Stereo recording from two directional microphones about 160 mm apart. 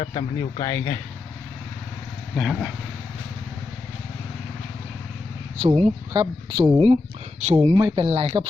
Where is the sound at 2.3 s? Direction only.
5° right (ahead or behind).